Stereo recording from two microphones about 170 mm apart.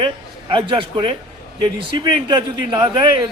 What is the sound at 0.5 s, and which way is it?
A man's voice, 30° right (ahead or behind).